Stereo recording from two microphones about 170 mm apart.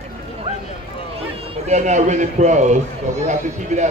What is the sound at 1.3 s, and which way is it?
A man's voice, 35° right (ahead or behind).